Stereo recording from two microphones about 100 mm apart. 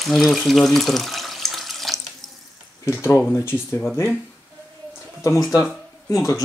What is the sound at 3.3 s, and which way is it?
Speech, 25° left (ahead or behind).